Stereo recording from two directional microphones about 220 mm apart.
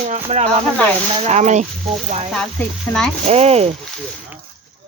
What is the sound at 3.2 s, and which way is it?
Speech, 30° right (ahead or behind).